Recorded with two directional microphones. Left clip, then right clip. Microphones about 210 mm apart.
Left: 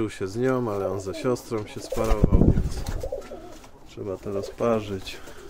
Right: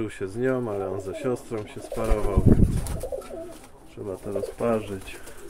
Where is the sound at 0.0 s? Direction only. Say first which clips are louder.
Left 1 dB; 20° left (ahead or behind).